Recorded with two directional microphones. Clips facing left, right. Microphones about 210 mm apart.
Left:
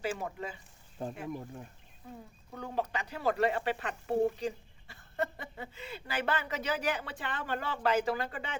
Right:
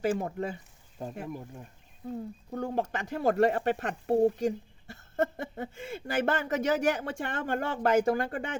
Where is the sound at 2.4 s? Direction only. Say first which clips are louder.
Right 4 dB; 45° right (ahead or behind).